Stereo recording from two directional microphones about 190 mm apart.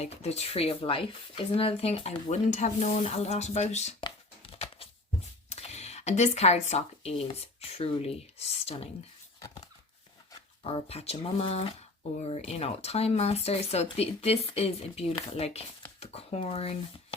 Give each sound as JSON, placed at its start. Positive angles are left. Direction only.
{"t": 0.0, "sound": "speech", "side_deg": 35}
{"t": 4.0, "sound": "tearing", "side_deg": 30}
{"t": 5.5, "sound": "speech", "side_deg": 35}
{"t": 10.6, "sound": "speech", "side_deg": 30}